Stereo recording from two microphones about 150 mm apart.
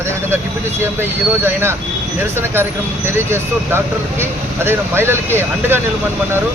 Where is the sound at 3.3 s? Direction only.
15° right (ahead or behind).